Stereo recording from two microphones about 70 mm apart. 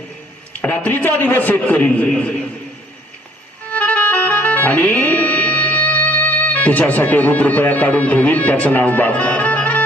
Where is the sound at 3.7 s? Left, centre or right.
Left.